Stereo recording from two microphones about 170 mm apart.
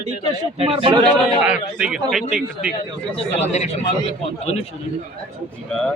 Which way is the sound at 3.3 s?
40° left (ahead or behind).